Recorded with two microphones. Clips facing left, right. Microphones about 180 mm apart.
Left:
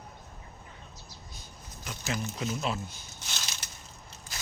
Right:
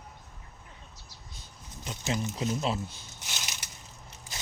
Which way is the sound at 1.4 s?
25° right (ahead or behind).